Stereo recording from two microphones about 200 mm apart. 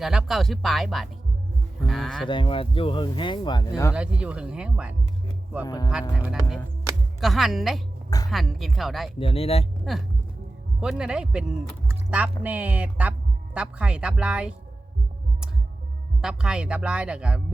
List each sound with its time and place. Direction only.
0.0 s speech: 5° right (ahead or behind)
2.2 s speech: 25° left (ahead or behind)
3.9 s speech: 5° right (ahead or behind)
5.6 s speech: 20° left (ahead or behind)
5.9 s speech: 5° right (ahead or behind)
9.1 s speech: 30° left (ahead or behind)
9.9 s speech: centre (ahead or behind)
16.2 s speech: 5° right (ahead or behind)